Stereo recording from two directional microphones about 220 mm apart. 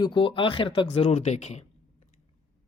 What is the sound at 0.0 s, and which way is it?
Speech, 20° left (ahead or behind).